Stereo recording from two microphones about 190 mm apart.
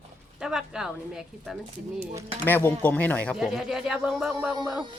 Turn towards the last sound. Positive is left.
turn(degrees=-5)  # may be behind; listen again after turning